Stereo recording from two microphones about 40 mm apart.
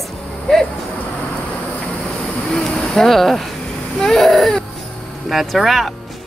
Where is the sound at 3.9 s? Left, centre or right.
Centre.